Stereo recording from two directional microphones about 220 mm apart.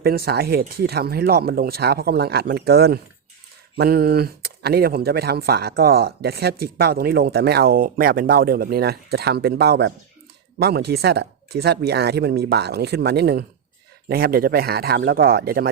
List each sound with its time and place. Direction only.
0.0 s speech: 45° right (ahead or behind)